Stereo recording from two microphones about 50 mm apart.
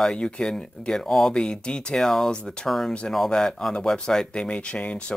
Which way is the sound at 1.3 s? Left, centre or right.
Centre.